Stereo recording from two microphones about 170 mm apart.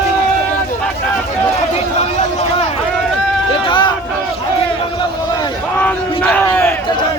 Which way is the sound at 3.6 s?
30° left (ahead or behind).